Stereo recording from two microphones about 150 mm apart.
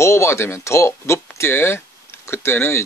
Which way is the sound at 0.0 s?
20° left (ahead or behind).